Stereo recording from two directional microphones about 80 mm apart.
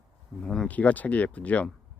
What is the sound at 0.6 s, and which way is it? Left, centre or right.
Speech, centre.